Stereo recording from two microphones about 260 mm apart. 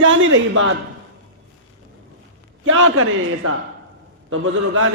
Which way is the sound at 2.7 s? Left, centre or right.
Right.